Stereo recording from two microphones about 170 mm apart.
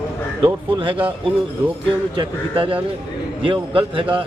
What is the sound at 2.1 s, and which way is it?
A man's voice, 30° right (ahead or behind).